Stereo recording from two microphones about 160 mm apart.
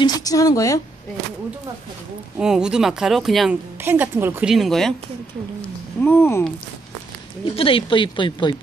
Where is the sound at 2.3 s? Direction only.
5° right (ahead or behind).